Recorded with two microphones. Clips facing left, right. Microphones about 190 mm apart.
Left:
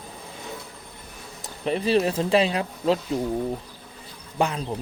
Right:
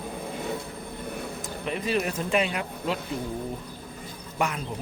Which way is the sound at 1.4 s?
30° left (ahead or behind).